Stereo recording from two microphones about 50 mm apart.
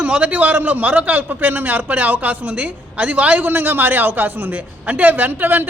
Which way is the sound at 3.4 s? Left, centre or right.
Right.